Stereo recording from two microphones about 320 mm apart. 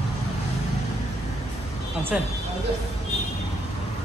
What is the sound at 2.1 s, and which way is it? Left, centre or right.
Speech, centre.